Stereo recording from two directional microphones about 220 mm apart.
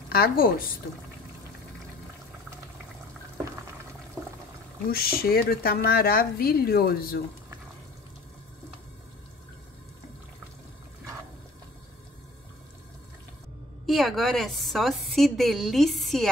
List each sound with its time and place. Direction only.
0.1 s speech: 45° left (ahead or behind)
4.9 s speech: 45° left (ahead or behind)
13.8 s a woman's voice: centre (ahead or behind)